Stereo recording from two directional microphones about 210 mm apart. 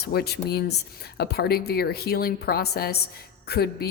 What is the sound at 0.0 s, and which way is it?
Speech, 50° left (ahead or behind).